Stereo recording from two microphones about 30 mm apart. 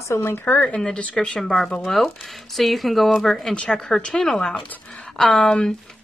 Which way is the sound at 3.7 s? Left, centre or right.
Left.